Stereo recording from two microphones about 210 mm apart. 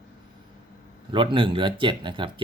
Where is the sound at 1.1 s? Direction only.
25° right (ahead or behind).